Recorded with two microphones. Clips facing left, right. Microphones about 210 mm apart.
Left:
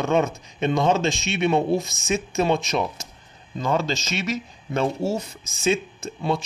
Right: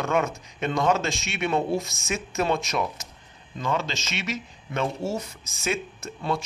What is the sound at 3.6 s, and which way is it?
Speech, 35° left (ahead or behind).